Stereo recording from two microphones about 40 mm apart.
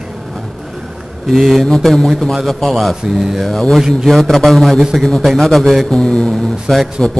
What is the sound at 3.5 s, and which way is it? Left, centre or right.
A man's voice, centre.